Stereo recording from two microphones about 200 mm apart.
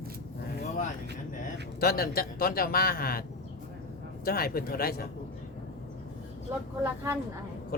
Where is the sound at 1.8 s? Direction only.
50° left (ahead or behind).